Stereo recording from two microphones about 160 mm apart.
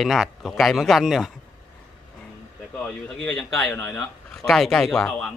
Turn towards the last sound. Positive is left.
turn(degrees=5)  # may be behind; listen again after turning